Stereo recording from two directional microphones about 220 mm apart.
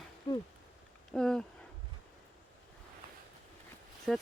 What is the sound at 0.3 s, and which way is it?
Speech, 20° left (ahead or behind).